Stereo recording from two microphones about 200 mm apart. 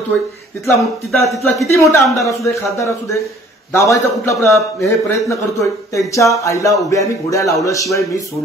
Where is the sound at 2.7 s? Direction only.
15° left (ahead or behind).